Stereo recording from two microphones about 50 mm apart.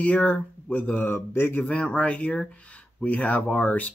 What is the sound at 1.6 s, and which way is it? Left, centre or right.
Speech, left.